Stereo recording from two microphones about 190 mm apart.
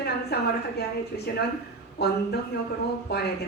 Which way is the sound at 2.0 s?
60° left (ahead or behind).